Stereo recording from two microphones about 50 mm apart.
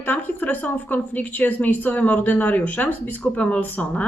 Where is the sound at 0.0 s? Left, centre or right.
Left.